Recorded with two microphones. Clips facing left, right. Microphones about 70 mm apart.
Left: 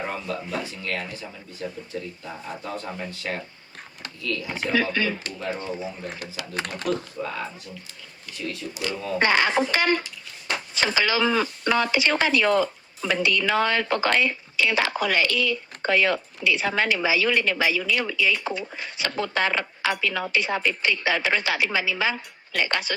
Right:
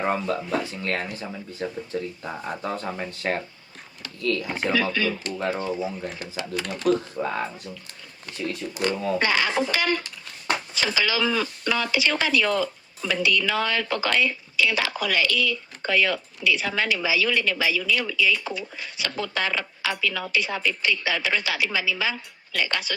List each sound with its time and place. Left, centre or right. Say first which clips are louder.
0.1 s speech: right 5 dB; right
4.7 s speech: left 1 dB; left
5.5 s speech: right 2 dB; right
6.5 s speech: even; left
6.8 s speech: right 6 dB; right
9.1 s speech: left 6 dB; left